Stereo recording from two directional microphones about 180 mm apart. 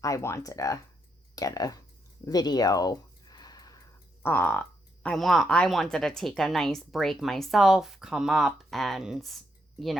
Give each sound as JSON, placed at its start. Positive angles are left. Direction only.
{"t": 0.0, "sound": "speech", "side_deg": 15}
{"t": 2.2, "sound": "a sound", "side_deg": 20}
{"t": 4.2, "sound": "a woman's voice", "side_deg": 10}